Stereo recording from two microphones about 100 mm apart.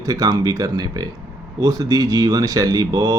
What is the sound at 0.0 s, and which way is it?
Speech, 40° right (ahead or behind).